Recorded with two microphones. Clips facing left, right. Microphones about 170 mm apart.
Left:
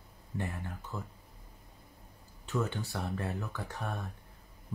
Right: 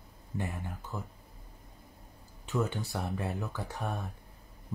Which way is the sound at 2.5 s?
15° right (ahead or behind).